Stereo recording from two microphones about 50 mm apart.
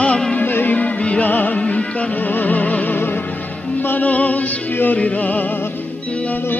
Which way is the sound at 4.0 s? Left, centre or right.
Left.